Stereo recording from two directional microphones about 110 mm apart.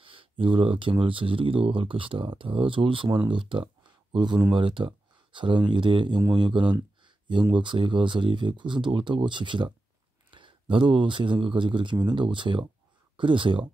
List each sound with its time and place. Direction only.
0.0 s speech: 55° right (ahead or behind)